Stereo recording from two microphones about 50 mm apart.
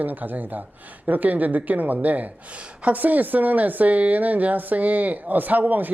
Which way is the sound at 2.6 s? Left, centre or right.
Right.